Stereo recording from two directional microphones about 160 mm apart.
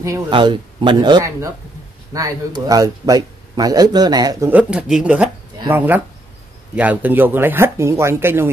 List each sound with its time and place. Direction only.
0.3 s speech: 30° right (ahead or behind)
4.5 s speech: 10° right (ahead or behind)